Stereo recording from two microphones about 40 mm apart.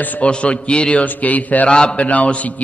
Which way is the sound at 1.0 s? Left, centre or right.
Left.